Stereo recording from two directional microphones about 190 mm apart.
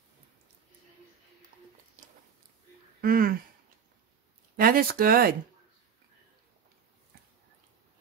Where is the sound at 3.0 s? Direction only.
50° right (ahead or behind).